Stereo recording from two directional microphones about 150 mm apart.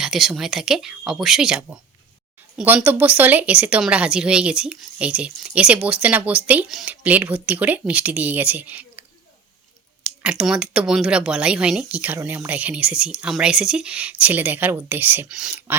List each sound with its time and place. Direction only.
0.0 s speech: 5° right (ahead or behind)